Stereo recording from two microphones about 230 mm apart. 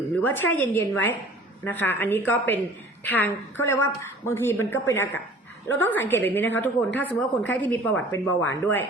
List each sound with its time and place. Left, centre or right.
0.2 s a woman's voice: centre